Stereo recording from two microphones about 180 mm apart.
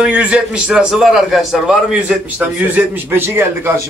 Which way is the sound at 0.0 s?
5° right (ahead or behind).